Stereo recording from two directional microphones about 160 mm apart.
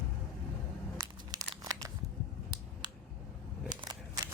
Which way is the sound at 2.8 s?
25° right (ahead or behind).